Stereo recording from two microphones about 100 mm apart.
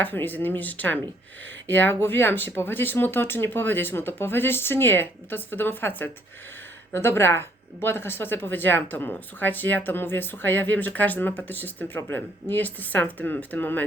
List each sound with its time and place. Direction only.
0.0 s speech: 20° left (ahead or behind)